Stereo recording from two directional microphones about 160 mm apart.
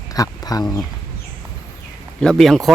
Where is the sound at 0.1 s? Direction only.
20° left (ahead or behind).